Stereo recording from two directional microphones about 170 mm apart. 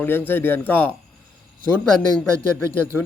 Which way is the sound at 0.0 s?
10° left (ahead or behind).